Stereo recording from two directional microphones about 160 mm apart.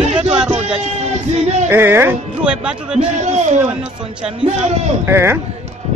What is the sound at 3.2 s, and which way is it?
Speech, 50° right (ahead or behind).